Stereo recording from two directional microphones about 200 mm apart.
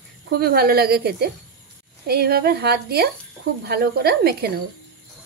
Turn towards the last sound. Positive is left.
turn(degrees=-50)  # may be behind; listen again after turning